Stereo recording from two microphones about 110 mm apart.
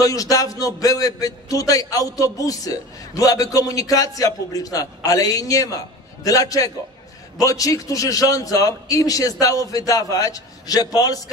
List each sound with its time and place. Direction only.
0.0 s a man's voice: 30° left (ahead or behind)